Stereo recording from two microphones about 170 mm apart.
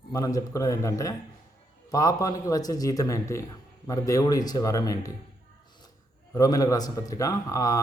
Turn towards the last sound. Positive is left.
turn(degrees=20)  # may be behind; listen again after turning